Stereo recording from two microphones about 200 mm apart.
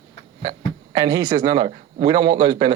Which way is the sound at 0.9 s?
20° right (ahead or behind).